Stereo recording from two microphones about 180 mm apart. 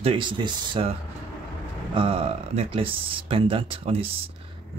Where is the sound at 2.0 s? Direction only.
30° right (ahead or behind).